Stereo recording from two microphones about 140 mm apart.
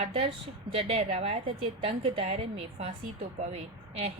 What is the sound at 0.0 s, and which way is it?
A woman's voice, 45° right (ahead or behind).